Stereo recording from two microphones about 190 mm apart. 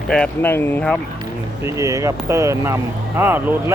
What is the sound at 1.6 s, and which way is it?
Speech, 15° right (ahead or behind).